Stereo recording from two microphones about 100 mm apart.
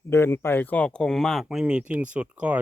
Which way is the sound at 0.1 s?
25° left (ahead or behind).